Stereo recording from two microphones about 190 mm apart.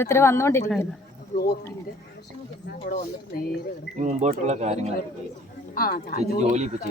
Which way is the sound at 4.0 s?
35° right (ahead or behind).